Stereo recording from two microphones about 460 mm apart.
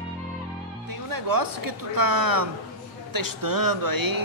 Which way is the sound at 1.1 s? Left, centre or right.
Right.